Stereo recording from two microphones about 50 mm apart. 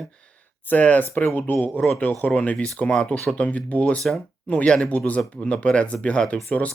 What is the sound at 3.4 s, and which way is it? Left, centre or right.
Speech, left.